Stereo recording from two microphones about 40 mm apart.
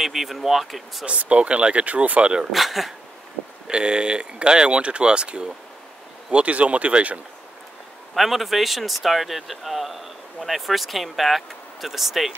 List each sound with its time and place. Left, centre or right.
0.0 s speech: centre
1.0 s speech: right
2.5 s speech: centre
3.7 s speech: right
8.1 s speech: centre